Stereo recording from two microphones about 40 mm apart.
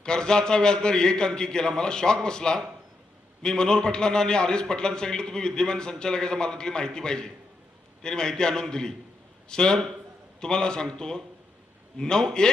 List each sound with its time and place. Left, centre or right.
0.0 s a man's voice: left